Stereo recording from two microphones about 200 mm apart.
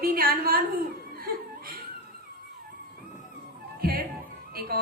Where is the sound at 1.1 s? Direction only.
50° right (ahead or behind).